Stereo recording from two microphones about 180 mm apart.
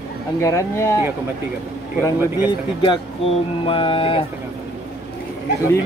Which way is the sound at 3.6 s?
30° left (ahead or behind).